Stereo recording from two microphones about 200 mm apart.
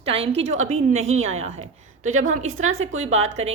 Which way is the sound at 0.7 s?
35° right (ahead or behind).